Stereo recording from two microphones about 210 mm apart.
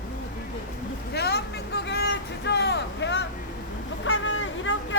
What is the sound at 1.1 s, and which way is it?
Vehicle, 50° left (ahead or behind).